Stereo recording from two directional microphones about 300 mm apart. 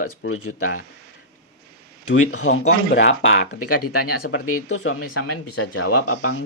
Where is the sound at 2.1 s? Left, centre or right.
Left.